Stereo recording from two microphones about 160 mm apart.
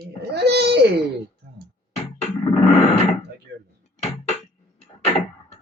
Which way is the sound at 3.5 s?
90° right.